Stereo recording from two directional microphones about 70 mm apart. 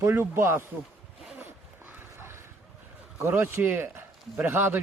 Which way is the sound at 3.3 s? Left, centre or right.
Right.